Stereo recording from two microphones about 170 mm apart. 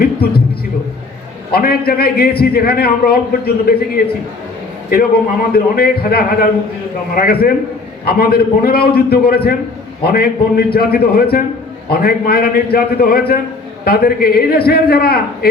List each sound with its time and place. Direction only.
0.0 s music: 65° left (ahead or behind)
1.5 s a man's voice: 65° left (ahead or behind)
5.5 s a man's voice: 65° left (ahead or behind)